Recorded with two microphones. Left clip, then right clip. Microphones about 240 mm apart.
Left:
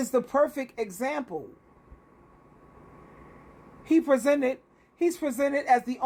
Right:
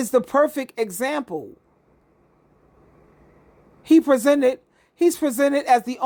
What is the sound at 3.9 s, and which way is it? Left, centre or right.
Speech, right.